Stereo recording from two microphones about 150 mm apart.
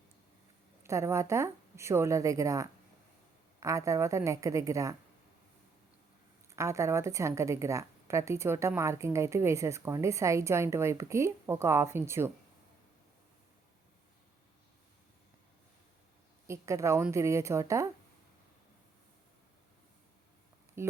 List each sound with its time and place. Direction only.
0.9 s a woman's voice: 20° right (ahead or behind)
6.5 s a woman's voice: 20° right (ahead or behind)
16.5 s a woman's voice: 20° right (ahead or behind)
20.8 s speech: 15° right (ahead or behind)